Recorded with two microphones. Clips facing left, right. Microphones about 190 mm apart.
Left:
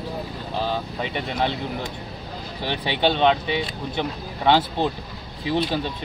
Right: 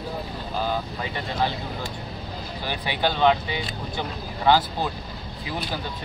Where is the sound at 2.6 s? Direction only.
25° left (ahead or behind).